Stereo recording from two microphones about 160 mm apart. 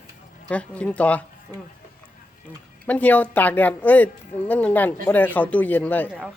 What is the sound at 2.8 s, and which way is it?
Speech, 10° left (ahead or behind).